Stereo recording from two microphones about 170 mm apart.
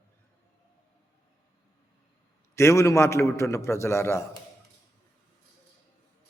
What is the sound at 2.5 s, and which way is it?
A man's voice, 15° left (ahead or behind).